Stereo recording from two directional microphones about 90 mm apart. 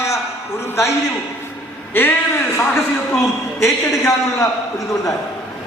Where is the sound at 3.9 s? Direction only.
35° left (ahead or behind).